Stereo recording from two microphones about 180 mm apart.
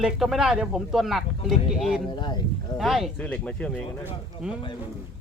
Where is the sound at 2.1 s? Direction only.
25° left (ahead or behind).